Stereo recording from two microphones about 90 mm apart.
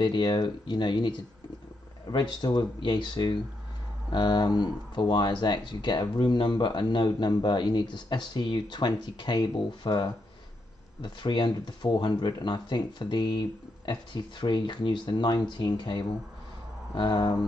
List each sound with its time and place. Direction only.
0.0 s speech: 60° left (ahead or behind)